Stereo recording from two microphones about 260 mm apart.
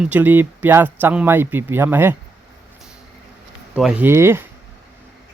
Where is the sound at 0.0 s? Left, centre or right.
Centre.